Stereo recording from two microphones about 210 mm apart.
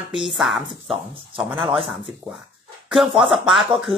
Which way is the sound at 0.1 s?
Centre (ahead or behind).